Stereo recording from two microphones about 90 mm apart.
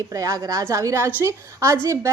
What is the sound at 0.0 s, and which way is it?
A woman's voice, 35° right (ahead or behind).